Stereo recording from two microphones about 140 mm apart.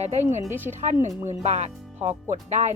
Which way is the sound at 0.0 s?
55° right (ahead or behind).